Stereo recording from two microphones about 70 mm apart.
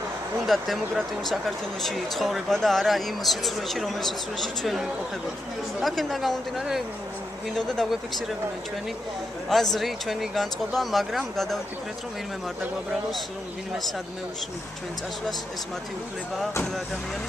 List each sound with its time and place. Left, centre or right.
0.5 s speech: centre
9.5 s speech: centre